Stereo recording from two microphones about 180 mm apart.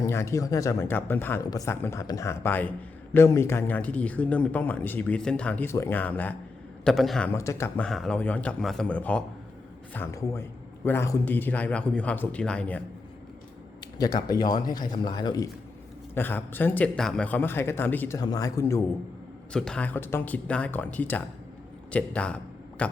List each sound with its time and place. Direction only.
0.0 s speech: 15° left (ahead or behind)
7.9 s speech: centre (ahead or behind)
14.0 s a man's voice: 20° left (ahead or behind)
16.1 s a man's voice: 10° left (ahead or behind)
19.5 s speech: 5° left (ahead or behind)